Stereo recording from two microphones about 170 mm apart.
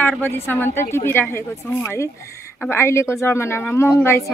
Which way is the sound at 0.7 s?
15° left (ahead or behind).